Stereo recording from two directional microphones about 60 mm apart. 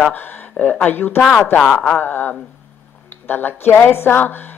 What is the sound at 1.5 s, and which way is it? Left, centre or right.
Speech, centre.